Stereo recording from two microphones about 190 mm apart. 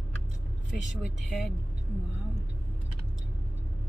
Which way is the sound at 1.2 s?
Centre (ahead or behind).